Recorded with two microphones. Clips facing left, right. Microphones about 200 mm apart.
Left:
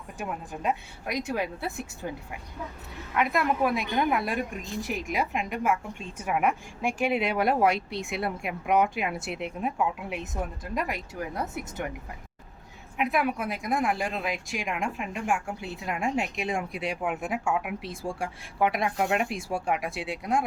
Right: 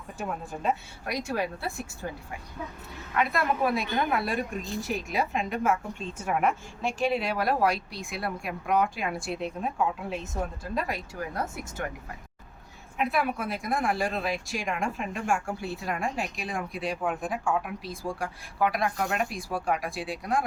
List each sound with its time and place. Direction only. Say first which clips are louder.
0.2 s a woman's voice: right 1 dB; 15° left (ahead or behind)
3.2 s a woman's voice: left 1 dB; 15° left (ahead or behind)
13.0 s a woman's voice: left 1 dB; 15° left (ahead or behind)
18.0 s a woman's voice: right 1 dB; 25° left (ahead or behind)